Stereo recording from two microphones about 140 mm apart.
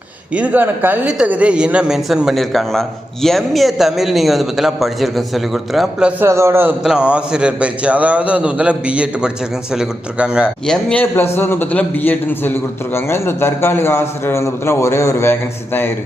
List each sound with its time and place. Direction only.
0.3 s speech: 10° right (ahead or behind)
6.2 s a man's voice: 20° right (ahead or behind)
10.7 s a man's voice: 5° left (ahead or behind)